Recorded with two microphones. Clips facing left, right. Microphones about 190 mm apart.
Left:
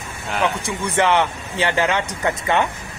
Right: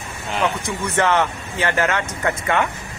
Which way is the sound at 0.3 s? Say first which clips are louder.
Even; 10° left (ahead or behind).